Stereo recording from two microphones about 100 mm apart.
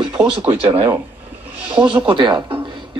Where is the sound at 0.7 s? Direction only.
20° right (ahead or behind).